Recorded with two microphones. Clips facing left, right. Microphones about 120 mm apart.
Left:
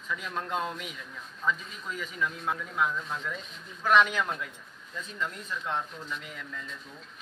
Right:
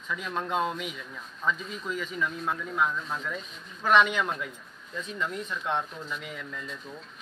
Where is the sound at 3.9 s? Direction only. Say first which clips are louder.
Right 1 dB; 5° right (ahead or behind).